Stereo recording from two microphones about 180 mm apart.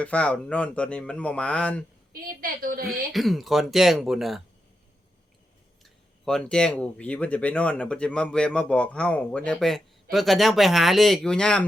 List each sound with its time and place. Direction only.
0.0 s speech: 5° left (ahead or behind)
2.4 s a woman's voice: 50° right (ahead or behind)
2.8 s speech: centre (ahead or behind)
5.8 s speech: 5° left (ahead or behind)